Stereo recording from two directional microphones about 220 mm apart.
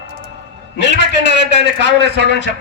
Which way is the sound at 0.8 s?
50° left (ahead or behind).